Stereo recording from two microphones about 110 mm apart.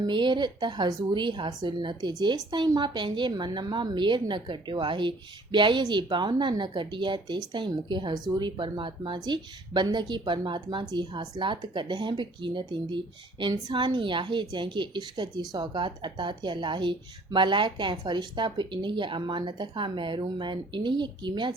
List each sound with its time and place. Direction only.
0.0 s a woman's voice: 45° right (ahead or behind)